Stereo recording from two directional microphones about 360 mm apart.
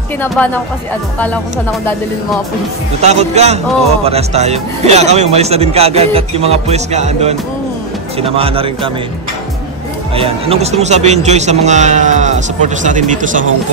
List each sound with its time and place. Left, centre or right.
0.4 s speech: centre
3.0 s speech: centre
10.1 s a man's voice: centre